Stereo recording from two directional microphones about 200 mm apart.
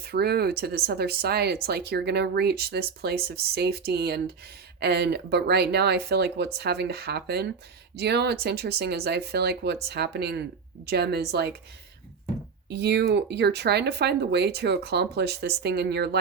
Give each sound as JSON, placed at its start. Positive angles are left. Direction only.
{"t": 0.0, "sound": "speech", "side_deg": -50}
{"t": 12.6, "sound": "speech", "side_deg": -55}